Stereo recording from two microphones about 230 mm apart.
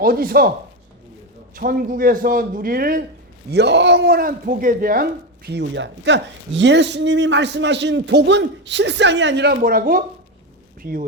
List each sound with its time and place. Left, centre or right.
0.0 s a man's voice: right
1.5 s a man's voice: right